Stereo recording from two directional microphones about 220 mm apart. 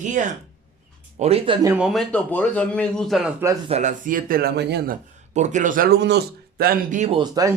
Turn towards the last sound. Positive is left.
turn(degrees=-20)  # may be behind; listen again after turning